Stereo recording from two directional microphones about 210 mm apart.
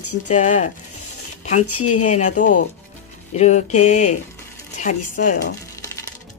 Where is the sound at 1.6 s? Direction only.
90° left.